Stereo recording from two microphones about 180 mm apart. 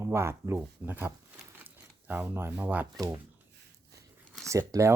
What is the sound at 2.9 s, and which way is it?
Speech, 20° right (ahead or behind).